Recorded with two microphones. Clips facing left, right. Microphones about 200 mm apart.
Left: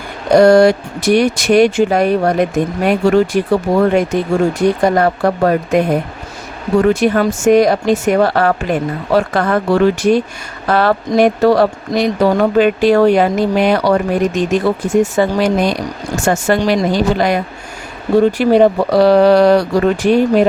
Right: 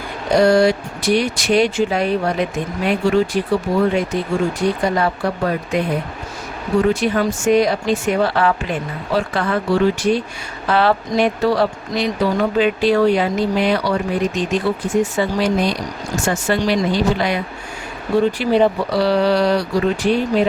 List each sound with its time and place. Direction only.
0.3 s speech: 45° left (ahead or behind)